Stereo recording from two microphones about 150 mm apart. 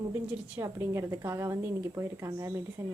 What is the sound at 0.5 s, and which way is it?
Speech, 15° right (ahead or behind).